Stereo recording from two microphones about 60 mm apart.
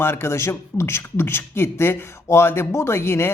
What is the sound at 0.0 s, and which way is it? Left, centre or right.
A man's voice, left.